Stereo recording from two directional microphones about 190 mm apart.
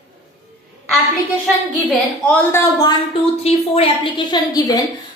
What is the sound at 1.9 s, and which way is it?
A woman's voice, 10° left (ahead or behind).